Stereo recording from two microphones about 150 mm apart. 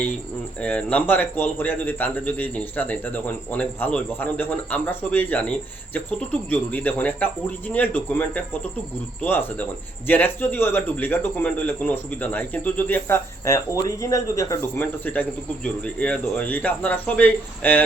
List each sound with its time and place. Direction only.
0.6 s a man's voice: 10° left (ahead or behind)